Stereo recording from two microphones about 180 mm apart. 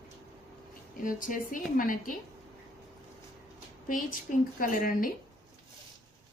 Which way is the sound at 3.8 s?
50° left (ahead or behind).